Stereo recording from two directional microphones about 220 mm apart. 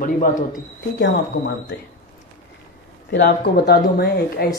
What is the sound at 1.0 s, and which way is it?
Speech, 50° left (ahead or behind).